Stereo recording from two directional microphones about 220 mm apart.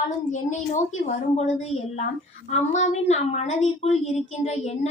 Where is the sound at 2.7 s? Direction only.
30° left (ahead or behind).